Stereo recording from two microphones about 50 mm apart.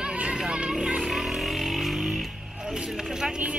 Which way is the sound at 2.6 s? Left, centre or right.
Centre.